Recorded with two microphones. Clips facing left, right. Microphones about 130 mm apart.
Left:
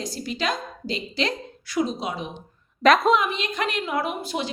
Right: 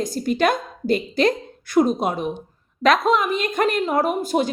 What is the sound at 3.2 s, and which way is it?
A woman's voice, 45° right (ahead or behind).